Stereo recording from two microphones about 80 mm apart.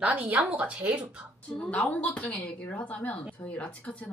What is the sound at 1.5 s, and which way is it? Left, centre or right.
A woman's voice, centre.